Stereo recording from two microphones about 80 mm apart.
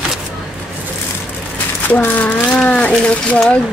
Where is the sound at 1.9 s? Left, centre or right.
Centre.